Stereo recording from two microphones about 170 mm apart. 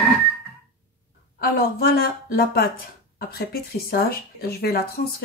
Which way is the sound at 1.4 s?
60° left (ahead or behind).